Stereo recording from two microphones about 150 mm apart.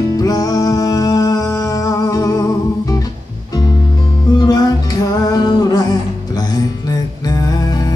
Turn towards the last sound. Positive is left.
turn(degrees=25)  # may be behind; listen again after turning